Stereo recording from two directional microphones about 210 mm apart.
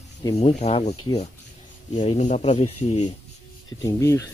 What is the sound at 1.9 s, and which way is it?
Speech, 35° left (ahead or behind).